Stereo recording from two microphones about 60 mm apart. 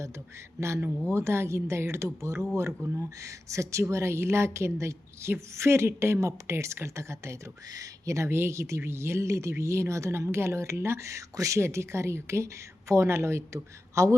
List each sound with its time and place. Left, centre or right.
1.0 s a woman's voice: right
2.8 s speech: right
3.2 s a woman's voice: right
7.7 s a woman's voice: right
11.6 s a woman's voice: right